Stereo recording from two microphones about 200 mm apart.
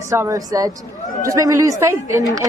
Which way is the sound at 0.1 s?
15° right (ahead or behind).